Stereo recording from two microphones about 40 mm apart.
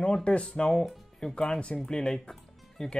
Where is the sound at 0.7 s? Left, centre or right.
Centre.